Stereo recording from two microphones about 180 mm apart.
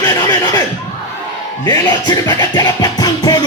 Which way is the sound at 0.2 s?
20° left (ahead or behind).